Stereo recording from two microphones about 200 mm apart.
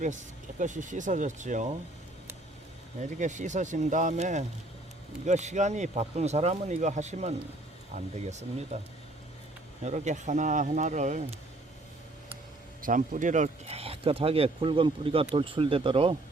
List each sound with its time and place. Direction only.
0.6 s speech: 40° right (ahead or behind)
3.0 s speech: 35° right (ahead or behind)
9.8 s speech: 35° right (ahead or behind)
12.8 s speech: 40° right (ahead or behind); by 16.1 s 25° right (ahead or behind)